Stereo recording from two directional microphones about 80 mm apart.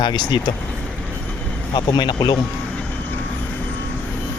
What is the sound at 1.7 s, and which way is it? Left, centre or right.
Speech, left.